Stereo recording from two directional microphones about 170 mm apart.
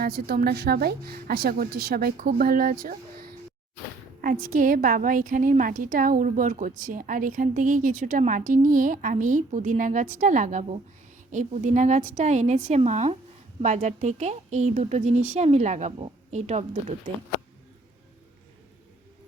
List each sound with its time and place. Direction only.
0.0 s a woman's voice: 65° right (ahead or behind); by 16.6 s 40° right (ahead or behind)